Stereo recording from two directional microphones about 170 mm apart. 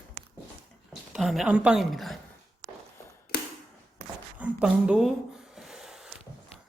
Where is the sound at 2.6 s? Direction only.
45° right (ahead or behind).